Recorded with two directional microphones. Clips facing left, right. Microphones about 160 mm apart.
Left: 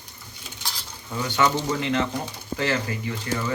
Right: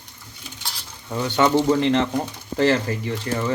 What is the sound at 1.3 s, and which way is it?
Speech, 25° right (ahead or behind).